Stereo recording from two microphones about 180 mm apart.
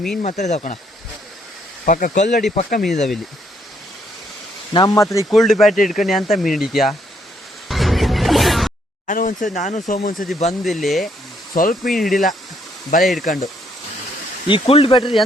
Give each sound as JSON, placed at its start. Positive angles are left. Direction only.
{"t": 0.2, "sound": "speech", "side_deg": 40}
{"t": 1.8, "sound": "speech", "side_deg": 50}
{"t": 4.7, "sound": "speech", "side_deg": 20}
{"t": 5.3, "sound": "speech", "side_deg": 0}
{"t": 5.7, "sound": "speech", "side_deg": 45}
{"t": 6.0, "sound": "speech", "side_deg": 0}
{"t": 7.7, "sound": "music", "side_deg": 0}
{"t": 9.0, "sound": "speech", "side_deg": 45}
{"t": 10.6, "sound": "speech", "side_deg": 0}
{"t": 11.5, "sound": "speech", "side_deg": 50}
{"t": 13.0, "sound": "speech", "side_deg": 0}
{"t": 13.2, "sound": "speech", "side_deg": 50}
{"t": 14.4, "sound": "speech", "side_deg": 30}